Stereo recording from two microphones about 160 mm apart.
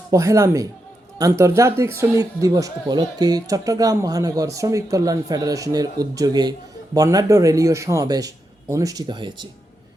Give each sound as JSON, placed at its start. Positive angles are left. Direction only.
{"t": 0.1, "sound": "speech", "side_deg": -20}